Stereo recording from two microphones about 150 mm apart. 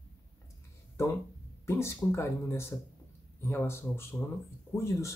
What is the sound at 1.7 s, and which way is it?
Speech, 20° left (ahead or behind).